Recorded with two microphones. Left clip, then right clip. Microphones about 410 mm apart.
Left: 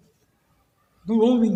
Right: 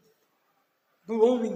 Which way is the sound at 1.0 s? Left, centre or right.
Left.